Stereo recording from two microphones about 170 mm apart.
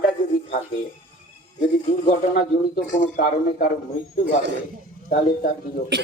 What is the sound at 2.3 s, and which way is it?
A man's voice, 55° left (ahead or behind).